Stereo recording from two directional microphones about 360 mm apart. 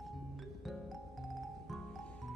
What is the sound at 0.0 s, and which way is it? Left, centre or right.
Music, centre.